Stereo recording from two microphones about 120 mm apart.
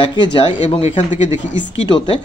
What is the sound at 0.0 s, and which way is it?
A man's voice, 40° left (ahead or behind).